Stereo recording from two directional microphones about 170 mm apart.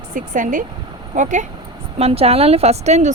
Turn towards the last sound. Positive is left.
turn(degrees=-40)  # may be behind; listen again after turning